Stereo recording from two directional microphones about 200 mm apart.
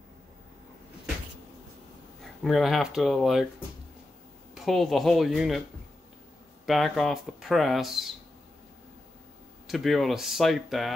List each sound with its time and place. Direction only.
2.2 s speech: centre (ahead or behind)
4.6 s speech: centre (ahead or behind)
6.6 s speech: centre (ahead or behind)
9.7 s speech: centre (ahead or behind)